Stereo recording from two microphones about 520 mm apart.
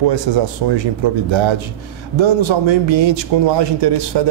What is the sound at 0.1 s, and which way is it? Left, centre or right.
A man's voice, right.